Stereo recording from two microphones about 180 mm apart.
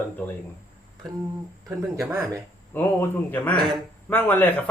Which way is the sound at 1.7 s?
15° right (ahead or behind).